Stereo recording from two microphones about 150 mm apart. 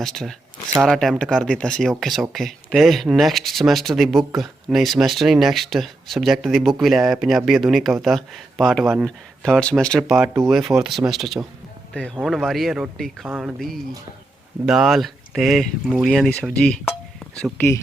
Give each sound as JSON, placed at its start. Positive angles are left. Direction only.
{"t": 0.0, "sound": "speech", "side_deg": 0}
{"t": 13.2, "sound": "speech", "side_deg": -10}
{"t": 14.7, "sound": "speech", "side_deg": -5}
{"t": 16.5, "sound": "a sound", "side_deg": 5}